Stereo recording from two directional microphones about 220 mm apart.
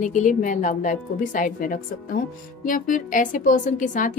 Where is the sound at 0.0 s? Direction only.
35° left (ahead or behind).